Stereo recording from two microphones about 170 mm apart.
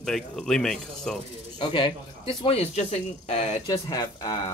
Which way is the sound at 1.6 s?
30° left (ahead or behind).